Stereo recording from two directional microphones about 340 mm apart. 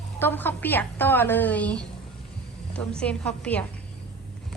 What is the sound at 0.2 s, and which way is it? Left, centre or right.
A woman's voice, centre.